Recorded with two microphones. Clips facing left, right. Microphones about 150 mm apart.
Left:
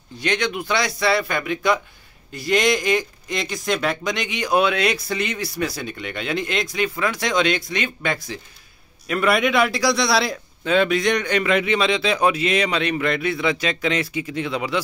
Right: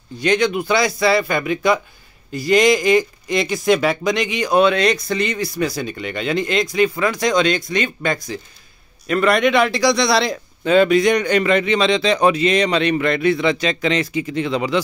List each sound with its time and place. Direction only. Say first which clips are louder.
0.2 s speech: right 6 dB; centre (ahead or behind)